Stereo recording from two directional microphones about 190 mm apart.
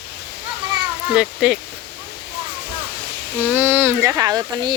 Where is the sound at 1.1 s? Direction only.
5° right (ahead or behind).